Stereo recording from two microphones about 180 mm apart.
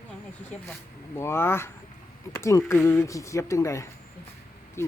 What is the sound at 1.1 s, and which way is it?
Speech, 15° left (ahead or behind).